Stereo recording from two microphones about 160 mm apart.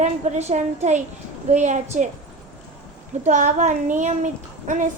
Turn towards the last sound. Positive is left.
turn(degrees=-50)  # may be behind; listen again after turning